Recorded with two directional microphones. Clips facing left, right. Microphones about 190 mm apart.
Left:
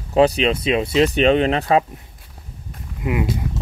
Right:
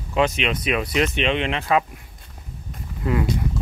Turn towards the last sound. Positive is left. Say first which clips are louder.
# left 1 dB
turn(degrees=15)  # may be behind; listen again after turning